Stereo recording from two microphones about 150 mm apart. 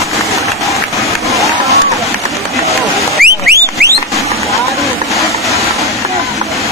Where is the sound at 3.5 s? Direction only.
90° right.